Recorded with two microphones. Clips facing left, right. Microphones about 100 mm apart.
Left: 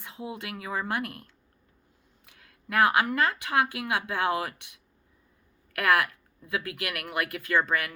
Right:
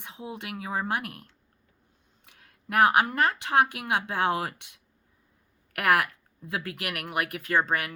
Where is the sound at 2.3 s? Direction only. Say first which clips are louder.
Right 1 dB; 30° right (ahead or behind).